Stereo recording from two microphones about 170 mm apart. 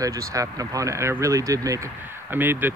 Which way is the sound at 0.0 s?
20° right (ahead or behind).